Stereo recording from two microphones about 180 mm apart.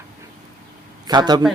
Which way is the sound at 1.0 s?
20° right (ahead or behind).